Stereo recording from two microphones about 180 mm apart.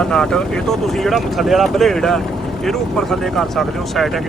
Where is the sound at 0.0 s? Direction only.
5° left (ahead or behind).